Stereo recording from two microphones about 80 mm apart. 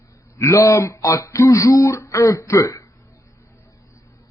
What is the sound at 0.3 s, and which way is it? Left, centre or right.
Speech, left.